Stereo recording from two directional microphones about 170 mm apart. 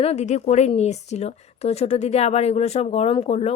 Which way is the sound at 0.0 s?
40° left (ahead or behind).